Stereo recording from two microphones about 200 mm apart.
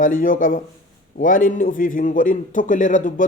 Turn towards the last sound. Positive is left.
turn(degrees=40)  # may be behind; listen again after turning